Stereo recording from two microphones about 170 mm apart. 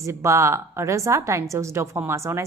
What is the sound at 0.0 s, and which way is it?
A woman's voice, 15° right (ahead or behind).